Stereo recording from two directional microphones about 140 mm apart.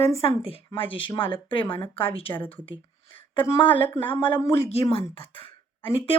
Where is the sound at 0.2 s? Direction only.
45° left (ahead or behind).